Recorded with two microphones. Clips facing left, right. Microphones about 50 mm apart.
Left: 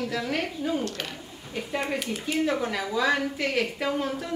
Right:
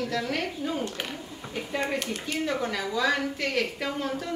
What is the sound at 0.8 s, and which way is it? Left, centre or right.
Speech, centre.